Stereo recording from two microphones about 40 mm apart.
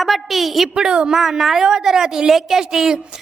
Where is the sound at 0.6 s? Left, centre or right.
Centre.